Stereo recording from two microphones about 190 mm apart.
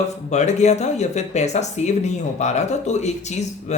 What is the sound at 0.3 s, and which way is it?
Speech, 35° left (ahead or behind).